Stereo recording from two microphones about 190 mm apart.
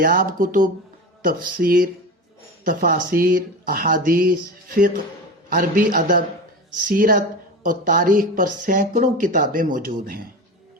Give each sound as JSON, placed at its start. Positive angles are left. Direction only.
{"t": 0.0, "sound": "speech", "side_deg": -50}